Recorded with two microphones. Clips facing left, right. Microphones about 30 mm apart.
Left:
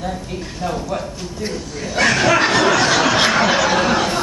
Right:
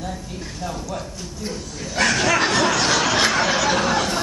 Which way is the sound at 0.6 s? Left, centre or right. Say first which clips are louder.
Left 6 dB; left.